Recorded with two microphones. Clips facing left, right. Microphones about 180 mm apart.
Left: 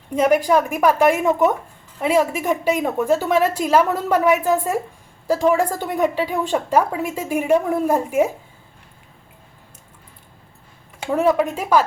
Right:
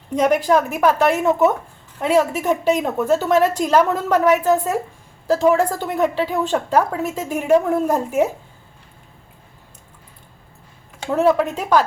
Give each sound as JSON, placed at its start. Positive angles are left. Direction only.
{"t": 0.2, "sound": "a woman's voice", "side_deg": 10}
{"t": 11.0, "sound": "a woman's voice", "side_deg": 10}